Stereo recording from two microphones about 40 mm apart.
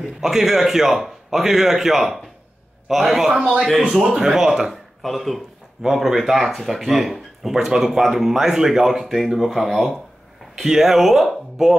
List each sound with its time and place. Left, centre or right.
0.2 s a man's voice: centre
5.0 s speech: centre
5.8 s a man's voice: centre